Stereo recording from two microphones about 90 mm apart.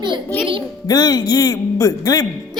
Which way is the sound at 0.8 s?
50° left (ahead or behind).